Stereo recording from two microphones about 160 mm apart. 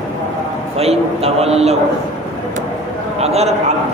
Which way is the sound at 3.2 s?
40° right (ahead or behind).